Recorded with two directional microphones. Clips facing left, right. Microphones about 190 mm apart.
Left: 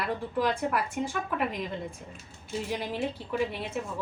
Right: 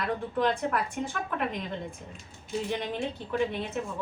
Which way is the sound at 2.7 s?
5° left (ahead or behind).